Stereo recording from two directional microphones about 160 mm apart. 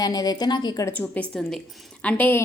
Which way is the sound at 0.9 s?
10° left (ahead or behind).